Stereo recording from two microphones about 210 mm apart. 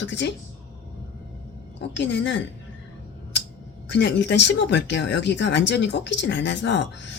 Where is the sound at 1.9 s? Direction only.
60° left (ahead or behind).